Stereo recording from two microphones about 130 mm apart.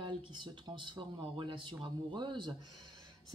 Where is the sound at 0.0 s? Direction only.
35° right (ahead or behind).